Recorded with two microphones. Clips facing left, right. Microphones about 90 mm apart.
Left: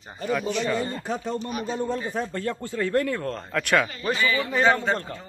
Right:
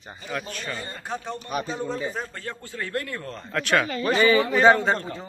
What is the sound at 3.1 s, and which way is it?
Speech, 80° left.